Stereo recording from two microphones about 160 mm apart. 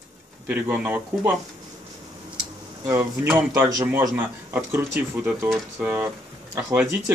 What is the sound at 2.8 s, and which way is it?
A man's voice, 15° right (ahead or behind).